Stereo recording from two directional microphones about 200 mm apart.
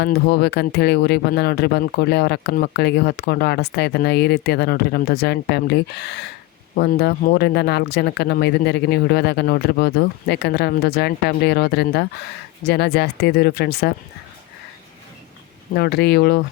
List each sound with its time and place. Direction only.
0.0 s speech: 55° left (ahead or behind)
15.7 s speech: 55° left (ahead or behind)